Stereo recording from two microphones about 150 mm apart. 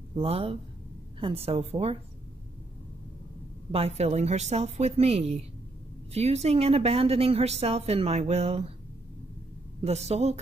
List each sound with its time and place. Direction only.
0.1 s a woman's voice: 40° right (ahead or behind)
3.7 s a woman's voice: 45° right (ahead or behind)
9.8 s a woman's voice: 45° right (ahead or behind)